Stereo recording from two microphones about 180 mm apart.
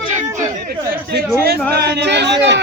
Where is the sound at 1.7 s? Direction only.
65° right (ahead or behind).